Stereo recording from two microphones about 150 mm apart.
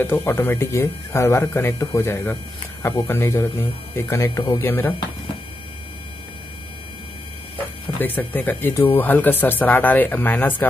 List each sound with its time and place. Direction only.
0.0 s speech: 15° left (ahead or behind)
8.0 s speech: 10° left (ahead or behind)